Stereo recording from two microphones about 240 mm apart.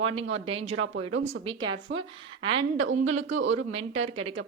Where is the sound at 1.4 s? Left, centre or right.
Centre.